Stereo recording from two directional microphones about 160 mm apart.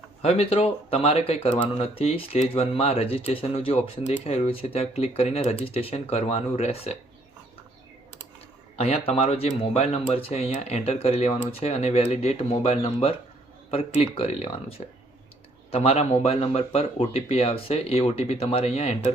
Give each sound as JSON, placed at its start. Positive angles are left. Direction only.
{"t": 0.2, "sound": "speech", "side_deg": 40}
{"t": 8.7, "sound": "speech", "side_deg": 40}